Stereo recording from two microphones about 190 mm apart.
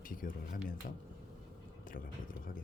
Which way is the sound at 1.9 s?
45° left (ahead or behind).